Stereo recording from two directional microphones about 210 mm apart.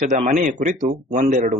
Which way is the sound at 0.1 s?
35° right (ahead or behind).